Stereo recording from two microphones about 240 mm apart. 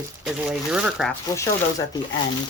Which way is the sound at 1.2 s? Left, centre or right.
Centre.